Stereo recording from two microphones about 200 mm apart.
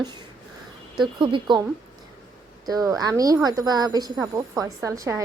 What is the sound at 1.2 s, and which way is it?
Speech, 25° right (ahead or behind).